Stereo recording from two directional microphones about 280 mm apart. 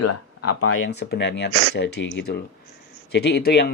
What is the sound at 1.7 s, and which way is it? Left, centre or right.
Speech, left.